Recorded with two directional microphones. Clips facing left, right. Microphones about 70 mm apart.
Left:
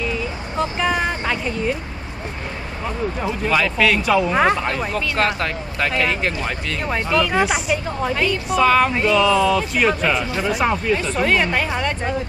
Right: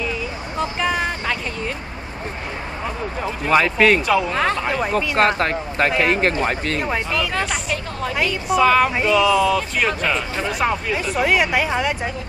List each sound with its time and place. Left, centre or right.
0.6 s speech: centre
3.4 s a man's voice: right
4.0 s speech: centre
4.3 s speech: centre
4.6 s speech: centre
5.1 s a man's voice: right
6.8 s speech: centre
8.1 s speech: centre